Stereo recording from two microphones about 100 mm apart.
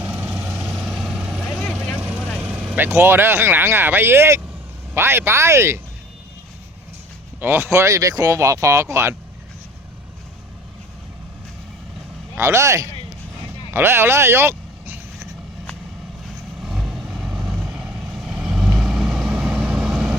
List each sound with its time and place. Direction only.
0.0 s vehicle: 15° right (ahead or behind)
0.5 s vehicle: centre (ahead or behind)
1.5 s vehicle: 10° left (ahead or behind)
2.0 s vehicle: 20° right (ahead or behind)
2.4 s speech: 15° right (ahead or behind)
7.3 s speech: 20° right (ahead or behind)
12.4 s speech: 30° right (ahead or behind)
13.7 s vehicle: 25° right (ahead or behind)
16.6 s vehicle: 5° right (ahead or behind)